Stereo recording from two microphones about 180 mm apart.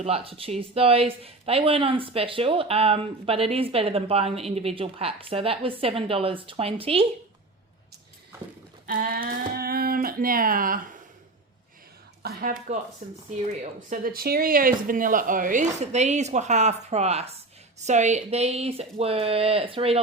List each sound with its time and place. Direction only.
0.0 s speech: 35° right (ahead or behind)
8.9 s speech: 60° right (ahead or behind)
12.2 s speech: 55° right (ahead or behind); by 20.0 s 30° right (ahead or behind)